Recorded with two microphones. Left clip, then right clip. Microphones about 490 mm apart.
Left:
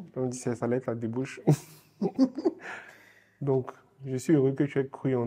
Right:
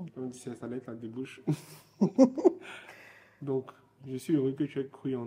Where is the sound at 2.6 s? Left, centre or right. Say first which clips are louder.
Left 5 dB; left.